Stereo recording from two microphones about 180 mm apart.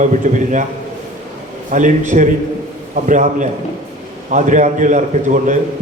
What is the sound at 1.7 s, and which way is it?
A man's voice, 45° right (ahead or behind).